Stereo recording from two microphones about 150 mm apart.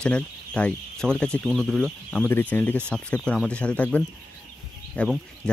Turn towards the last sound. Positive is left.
turn(degrees=5)  # may be behind; listen again after turning